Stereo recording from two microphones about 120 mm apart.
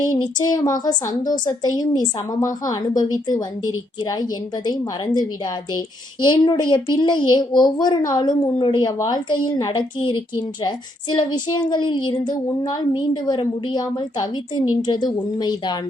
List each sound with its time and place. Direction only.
0.1 s speech: 35° left (ahead or behind)
6.2 s speech: 40° left (ahead or behind)